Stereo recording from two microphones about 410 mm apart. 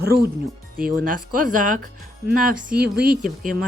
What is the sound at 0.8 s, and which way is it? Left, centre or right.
Speech, centre.